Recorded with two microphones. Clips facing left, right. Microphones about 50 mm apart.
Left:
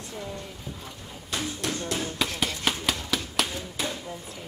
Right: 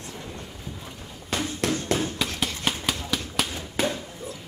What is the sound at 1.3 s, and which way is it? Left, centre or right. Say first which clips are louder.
Basketball bounce: right 4 dB; right.